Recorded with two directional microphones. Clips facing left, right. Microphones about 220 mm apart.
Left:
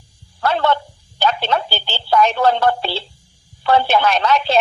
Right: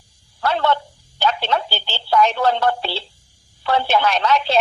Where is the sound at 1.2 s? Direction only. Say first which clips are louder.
Left 2 dB; 45° left (ahead or behind).